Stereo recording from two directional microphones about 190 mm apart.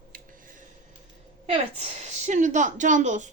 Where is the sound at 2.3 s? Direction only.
40° right (ahead or behind).